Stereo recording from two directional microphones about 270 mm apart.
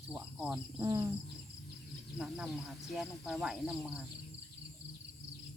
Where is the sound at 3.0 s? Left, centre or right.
Centre.